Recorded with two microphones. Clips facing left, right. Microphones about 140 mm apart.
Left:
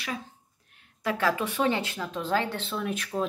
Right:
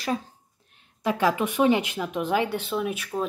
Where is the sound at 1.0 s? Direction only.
20° right (ahead or behind).